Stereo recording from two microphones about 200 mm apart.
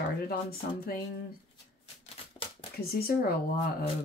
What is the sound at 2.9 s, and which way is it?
Speech, 50° left (ahead or behind).